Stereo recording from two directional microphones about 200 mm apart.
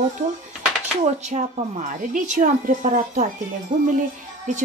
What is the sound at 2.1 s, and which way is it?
Speech, 40° right (ahead or behind).